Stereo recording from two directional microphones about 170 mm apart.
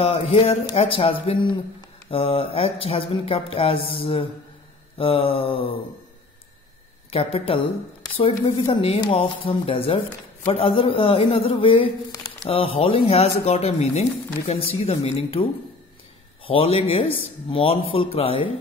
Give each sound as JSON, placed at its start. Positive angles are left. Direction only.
{"t": 0.0, "sound": "speech", "side_deg": 35}
{"t": 7.1, "sound": "speech", "side_deg": 35}
{"t": 16.4, "sound": "speech", "side_deg": 35}